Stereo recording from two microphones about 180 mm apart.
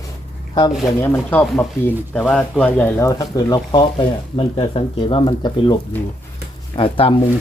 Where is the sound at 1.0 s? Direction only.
10° left (ahead or behind).